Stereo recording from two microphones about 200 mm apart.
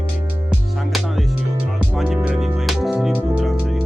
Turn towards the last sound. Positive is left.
turn(degrees=0)  # may be behind; listen again after turning